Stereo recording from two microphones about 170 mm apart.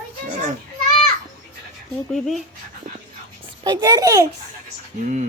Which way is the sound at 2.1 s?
Centre (ahead or behind).